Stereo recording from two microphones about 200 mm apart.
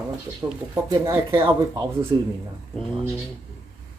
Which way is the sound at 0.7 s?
15° right (ahead or behind).